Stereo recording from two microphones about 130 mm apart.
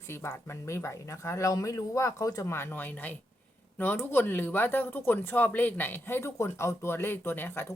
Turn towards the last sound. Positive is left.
turn(degrees=15)  # may be behind; listen again after turning